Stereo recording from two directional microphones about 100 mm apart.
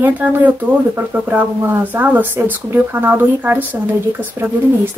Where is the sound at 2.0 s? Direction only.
15° right (ahead or behind).